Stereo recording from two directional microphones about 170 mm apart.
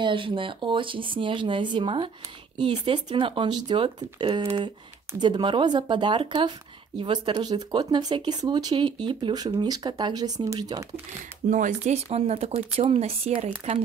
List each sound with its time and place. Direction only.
0.0 s speech: 30° right (ahead or behind)
11.4 s speech: 45° right (ahead or behind)